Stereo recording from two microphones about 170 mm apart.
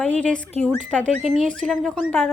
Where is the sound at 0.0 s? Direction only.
10° left (ahead or behind).